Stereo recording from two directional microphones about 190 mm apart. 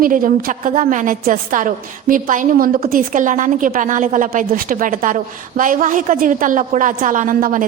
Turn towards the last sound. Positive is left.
turn(degrees=-45)  # may be behind; listen again after turning